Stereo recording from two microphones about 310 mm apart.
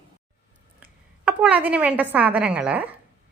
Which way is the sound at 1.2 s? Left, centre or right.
Centre.